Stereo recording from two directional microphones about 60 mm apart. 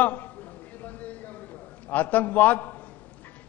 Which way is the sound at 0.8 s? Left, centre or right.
Left.